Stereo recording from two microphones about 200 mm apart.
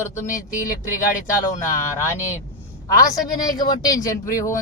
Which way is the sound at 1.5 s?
15° left (ahead or behind).